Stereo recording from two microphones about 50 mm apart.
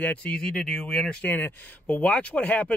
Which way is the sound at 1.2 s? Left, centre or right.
Left.